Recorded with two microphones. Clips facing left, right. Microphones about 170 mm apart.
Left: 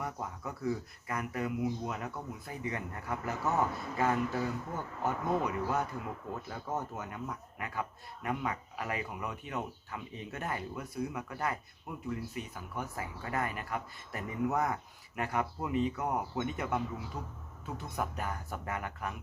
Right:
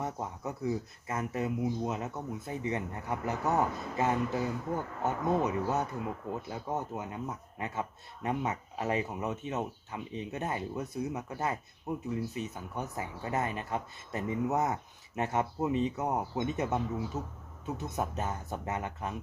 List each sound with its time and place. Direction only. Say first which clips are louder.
0.0 s speech: right 3 dB; 20° right (ahead or behind)